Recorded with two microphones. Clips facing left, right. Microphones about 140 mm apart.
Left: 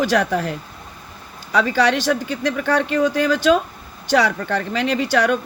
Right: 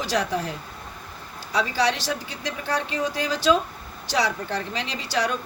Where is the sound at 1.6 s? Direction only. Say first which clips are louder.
Left 7 dB; 60° left (ahead or behind).